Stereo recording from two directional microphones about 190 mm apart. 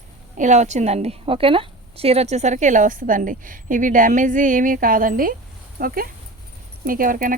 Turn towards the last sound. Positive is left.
turn(degrees=-45)  # may be behind; listen again after turning